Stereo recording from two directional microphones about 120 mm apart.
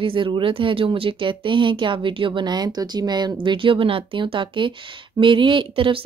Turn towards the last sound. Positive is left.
turn(degrees=-45)  # may be behind; listen again after turning